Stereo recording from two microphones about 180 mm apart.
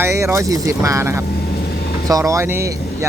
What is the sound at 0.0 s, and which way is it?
Speech, 15° right (ahead or behind).